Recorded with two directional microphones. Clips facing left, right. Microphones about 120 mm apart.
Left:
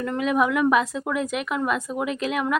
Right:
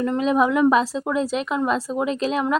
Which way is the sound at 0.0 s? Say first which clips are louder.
Right 3 dB; 25° right (ahead or behind).